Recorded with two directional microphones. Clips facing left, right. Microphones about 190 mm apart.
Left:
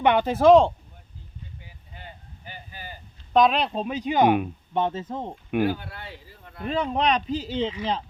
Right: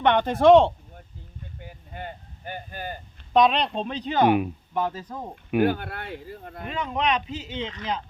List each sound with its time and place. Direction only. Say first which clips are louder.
0.0 s speech: even; 10° left (ahead or behind)
1.5 s a sound: right 8 dB; 55° right (ahead or behind)
3.3 s speech: even; centre (ahead or behind)
4.7 s speech: left 4 dB; 25° left (ahead or behind)
5.6 s speech: right 2 dB; 55° right (ahead or behind)
6.6 s speech: left 4 dB; 30° left (ahead or behind)
7.6 s speech: left 6 dB; 10° left (ahead or behind)